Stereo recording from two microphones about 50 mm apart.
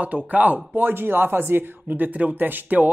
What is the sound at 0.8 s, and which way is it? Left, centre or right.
Speech, right.